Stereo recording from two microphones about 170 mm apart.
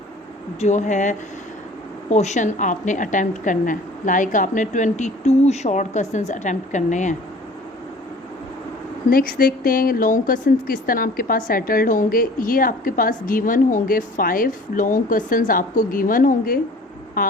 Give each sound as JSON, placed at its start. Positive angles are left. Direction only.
{"t": 0.6, "sound": "a woman's voice", "side_deg": 45}
{"t": 9.0, "sound": "a woman's voice", "side_deg": 55}